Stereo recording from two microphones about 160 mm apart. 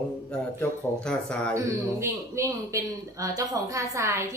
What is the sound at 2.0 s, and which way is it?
A woman's voice, 15° right (ahead or behind).